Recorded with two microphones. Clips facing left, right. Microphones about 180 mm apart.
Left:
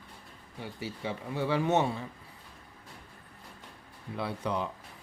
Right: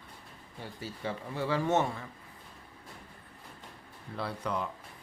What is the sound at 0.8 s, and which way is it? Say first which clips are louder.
Speech: left 1 dB; 10° left (ahead or behind).